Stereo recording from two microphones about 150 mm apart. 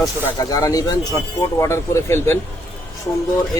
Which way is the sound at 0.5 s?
25° left (ahead or behind).